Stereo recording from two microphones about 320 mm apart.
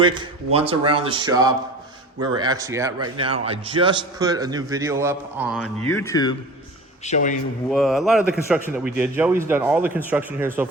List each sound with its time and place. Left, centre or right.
0.0 s a man's voice: centre
5.9 s speech: centre
7.0 s a man's voice: left
7.7 s a man's voice: centre